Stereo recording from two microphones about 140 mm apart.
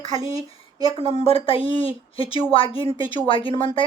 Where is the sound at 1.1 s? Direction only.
45° left (ahead or behind).